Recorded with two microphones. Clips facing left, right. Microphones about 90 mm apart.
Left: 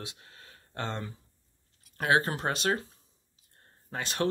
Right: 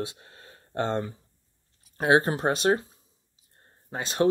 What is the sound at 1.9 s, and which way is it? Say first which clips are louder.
Speech: right 5 dB; 25° right (ahead or behind).